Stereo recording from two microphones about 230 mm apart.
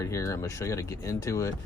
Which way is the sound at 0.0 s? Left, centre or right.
Centre.